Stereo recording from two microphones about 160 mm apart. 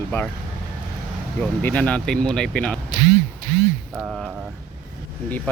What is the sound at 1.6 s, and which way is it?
Speech, 10° left (ahead or behind).